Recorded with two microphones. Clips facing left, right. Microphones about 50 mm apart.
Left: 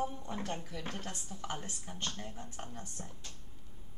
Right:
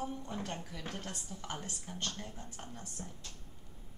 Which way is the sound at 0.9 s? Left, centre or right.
Centre.